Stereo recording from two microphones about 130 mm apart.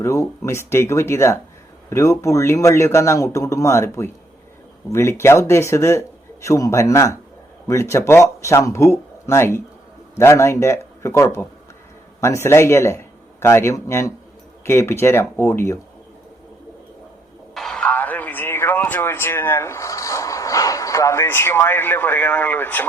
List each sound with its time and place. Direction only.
0.0 s a man's voice: 20° left (ahead or behind)
17.5 s speech: 5° left (ahead or behind)